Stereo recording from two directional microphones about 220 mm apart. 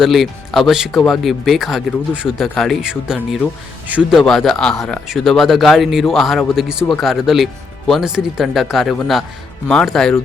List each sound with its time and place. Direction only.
0.0 s speech: centre (ahead or behind)